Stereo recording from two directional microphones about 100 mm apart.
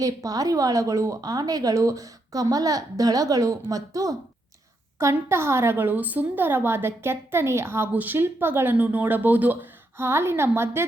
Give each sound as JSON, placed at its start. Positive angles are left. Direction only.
{"t": 0.0, "sound": "a woman's voice", "side_deg": -35}